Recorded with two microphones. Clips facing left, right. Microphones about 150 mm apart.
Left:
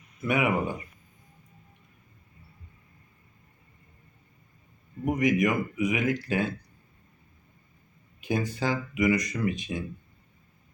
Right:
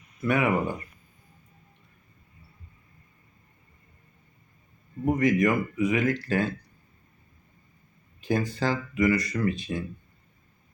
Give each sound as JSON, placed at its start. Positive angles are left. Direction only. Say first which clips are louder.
{"t": 0.2, "sound": "speech", "louder": "right 2 dB", "side_deg": 15}
{"t": 5.1, "sound": "speech", "louder": "right 1 dB", "side_deg": 15}
{"t": 8.2, "sound": "speech", "louder": "right 2 dB", "side_deg": 15}